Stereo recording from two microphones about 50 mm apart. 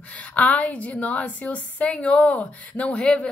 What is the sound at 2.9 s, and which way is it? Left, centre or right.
Speech, centre.